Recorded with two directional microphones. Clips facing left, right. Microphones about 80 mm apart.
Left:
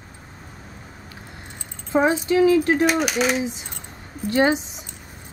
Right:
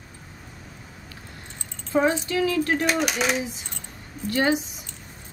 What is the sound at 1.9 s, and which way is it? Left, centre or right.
Speech, left.